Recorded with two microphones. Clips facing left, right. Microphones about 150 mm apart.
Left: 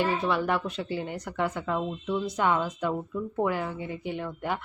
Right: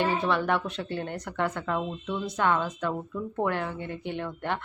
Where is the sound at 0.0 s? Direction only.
5° left (ahead or behind).